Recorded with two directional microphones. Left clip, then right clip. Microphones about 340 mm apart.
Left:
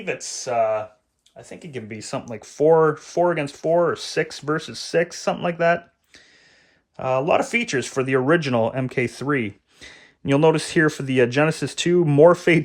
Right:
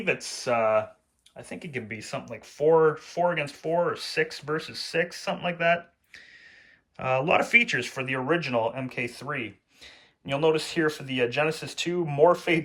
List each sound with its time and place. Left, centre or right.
0.0 s speech: centre